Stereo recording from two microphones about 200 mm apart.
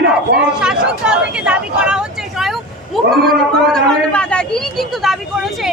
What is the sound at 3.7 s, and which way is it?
Speech, 5° left (ahead or behind).